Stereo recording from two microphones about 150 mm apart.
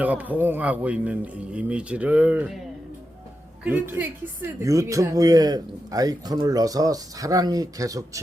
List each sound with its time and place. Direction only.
0.0 s a man's voice: 10° right (ahead or behind)
3.6 s a man's voice: 10° right (ahead or behind)